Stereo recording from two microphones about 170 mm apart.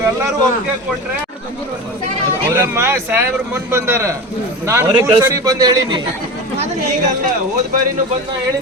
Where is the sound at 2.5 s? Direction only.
15° right (ahead or behind).